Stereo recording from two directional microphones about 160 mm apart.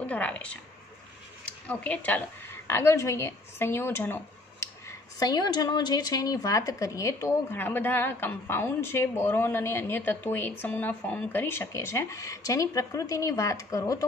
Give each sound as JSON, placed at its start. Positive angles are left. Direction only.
{"t": 0.0, "sound": "speech", "side_deg": 10}
{"t": 1.7, "sound": "a woman's voice", "side_deg": 10}